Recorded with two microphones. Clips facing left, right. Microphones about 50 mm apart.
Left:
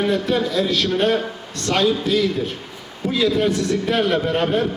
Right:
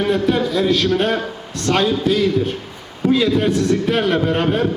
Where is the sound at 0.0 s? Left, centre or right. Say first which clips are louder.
Right 2 dB; centre.